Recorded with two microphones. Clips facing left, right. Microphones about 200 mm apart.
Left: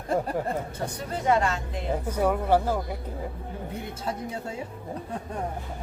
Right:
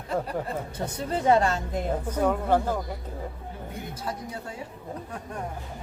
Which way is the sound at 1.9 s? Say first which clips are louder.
Left 1 dB; 10° left (ahead or behind).